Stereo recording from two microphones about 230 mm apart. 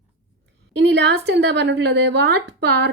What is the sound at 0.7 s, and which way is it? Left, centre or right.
A woman's voice, right.